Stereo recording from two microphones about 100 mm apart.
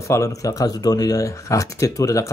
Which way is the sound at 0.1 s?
35° left (ahead or behind).